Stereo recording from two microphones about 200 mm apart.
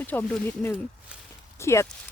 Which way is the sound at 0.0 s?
10° left (ahead or behind).